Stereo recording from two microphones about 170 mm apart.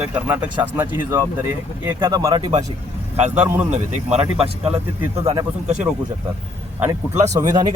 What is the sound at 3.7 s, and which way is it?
Speech, 45° right (ahead or behind).